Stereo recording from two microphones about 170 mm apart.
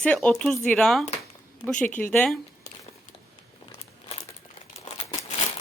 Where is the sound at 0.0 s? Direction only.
5° left (ahead or behind).